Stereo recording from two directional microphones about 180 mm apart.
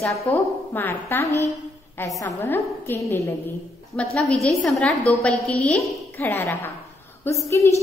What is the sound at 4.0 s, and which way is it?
A woman's voice, centre (ahead or behind).